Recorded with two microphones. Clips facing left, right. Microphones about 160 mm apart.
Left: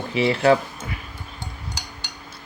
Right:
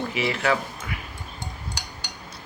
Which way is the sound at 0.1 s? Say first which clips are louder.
Left 9 dB; 30° left (ahead or behind).